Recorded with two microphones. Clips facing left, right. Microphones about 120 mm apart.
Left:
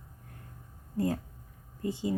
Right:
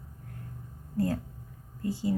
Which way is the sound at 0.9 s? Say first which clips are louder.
Right 1 dB; 15° left (ahead or behind).